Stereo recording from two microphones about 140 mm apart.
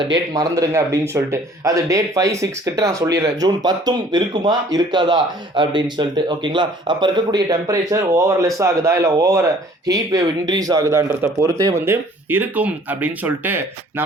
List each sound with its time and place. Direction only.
0.0 s speech: 25° right (ahead or behind)